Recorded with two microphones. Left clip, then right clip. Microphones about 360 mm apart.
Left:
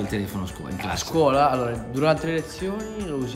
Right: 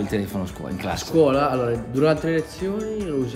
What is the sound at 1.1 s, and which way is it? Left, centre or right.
A man's voice, centre.